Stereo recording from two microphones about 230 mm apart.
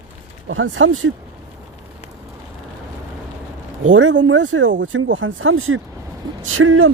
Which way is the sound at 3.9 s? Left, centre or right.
Right.